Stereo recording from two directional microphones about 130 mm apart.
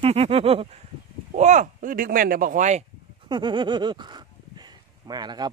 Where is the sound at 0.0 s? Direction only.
50° right (ahead or behind).